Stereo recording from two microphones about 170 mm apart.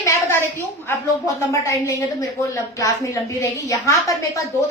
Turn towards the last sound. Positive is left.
turn(degrees=20)  # may be behind; listen again after turning